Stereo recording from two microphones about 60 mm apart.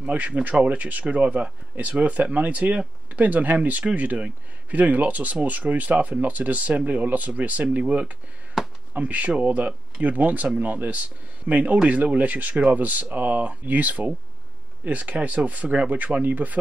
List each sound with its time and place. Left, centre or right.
0.0 s speech: right
8.6 s a sound: centre
8.9 s speech: right